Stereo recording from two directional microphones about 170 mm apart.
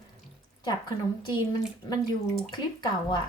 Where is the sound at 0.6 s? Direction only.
25° left (ahead or behind).